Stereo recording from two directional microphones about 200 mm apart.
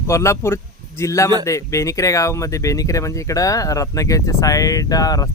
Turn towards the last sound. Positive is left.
turn(degrees=15)  # may be behind; listen again after turning